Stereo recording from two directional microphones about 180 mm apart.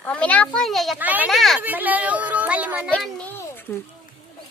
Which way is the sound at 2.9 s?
5° left (ahead or behind).